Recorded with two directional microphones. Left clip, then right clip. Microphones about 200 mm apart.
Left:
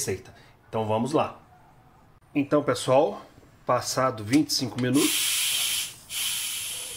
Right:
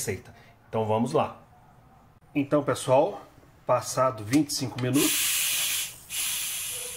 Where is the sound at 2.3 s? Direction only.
15° left (ahead or behind).